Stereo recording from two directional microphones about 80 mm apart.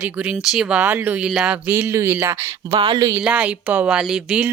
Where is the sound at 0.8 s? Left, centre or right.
Right.